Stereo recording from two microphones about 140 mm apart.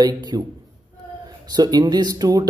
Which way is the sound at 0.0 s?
30° right (ahead or behind).